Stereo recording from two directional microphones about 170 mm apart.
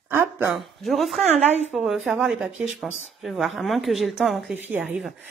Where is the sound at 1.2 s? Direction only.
40° right (ahead or behind).